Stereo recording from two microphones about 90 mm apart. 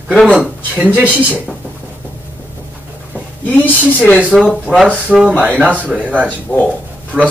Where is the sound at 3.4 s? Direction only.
20° left (ahead or behind).